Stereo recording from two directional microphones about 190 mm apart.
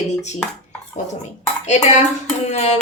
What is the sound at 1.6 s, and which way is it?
Speech, 35° left (ahead or behind).